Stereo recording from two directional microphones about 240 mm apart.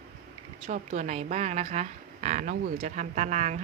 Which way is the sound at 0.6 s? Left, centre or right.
Right.